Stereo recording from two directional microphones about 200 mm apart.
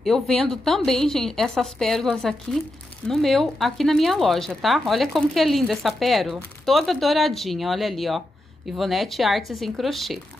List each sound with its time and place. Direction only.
0.0 s speech: centre (ahead or behind)